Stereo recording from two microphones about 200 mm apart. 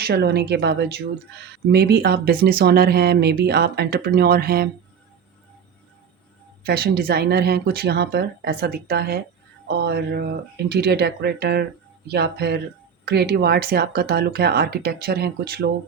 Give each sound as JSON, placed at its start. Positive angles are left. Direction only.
{"t": 0.0, "sound": "speech", "side_deg": -55}
{"t": 6.6, "sound": "speech", "side_deg": -50}